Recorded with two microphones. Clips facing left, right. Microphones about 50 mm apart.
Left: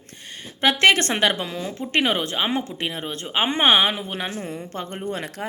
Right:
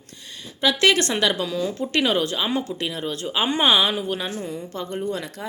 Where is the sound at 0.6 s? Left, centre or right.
Left.